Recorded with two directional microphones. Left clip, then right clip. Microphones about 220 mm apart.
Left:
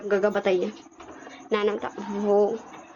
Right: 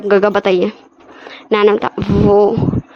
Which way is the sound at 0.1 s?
50° right (ahead or behind).